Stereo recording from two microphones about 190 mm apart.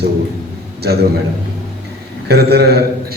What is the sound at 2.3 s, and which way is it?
Speech, 55° right (ahead or behind).